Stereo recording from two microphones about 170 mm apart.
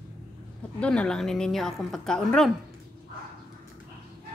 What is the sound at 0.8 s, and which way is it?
A woman's voice, 5° left (ahead or behind).